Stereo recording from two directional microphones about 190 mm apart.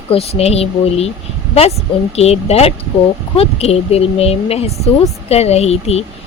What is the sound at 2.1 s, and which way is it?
Speech, 35° left (ahead or behind).